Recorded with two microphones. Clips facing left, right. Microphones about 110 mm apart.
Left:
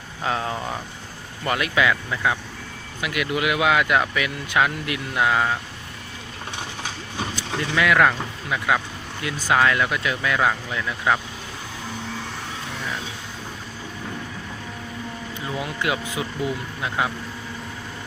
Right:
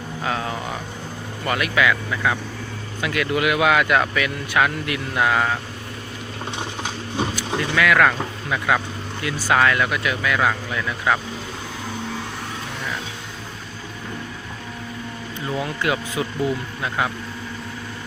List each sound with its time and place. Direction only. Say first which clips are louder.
0.3 s speech: left 1 dB; 25° left (ahead or behind)
6.6 s a sound: right 2 dB; 20° right (ahead or behind)
7.8 s speech: right 1 dB; 20° left (ahead or behind)
15.6 s speech: right 1 dB; 20° left (ahead or behind)